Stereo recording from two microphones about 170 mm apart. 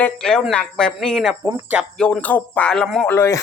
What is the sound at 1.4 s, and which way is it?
Speech, 15° right (ahead or behind).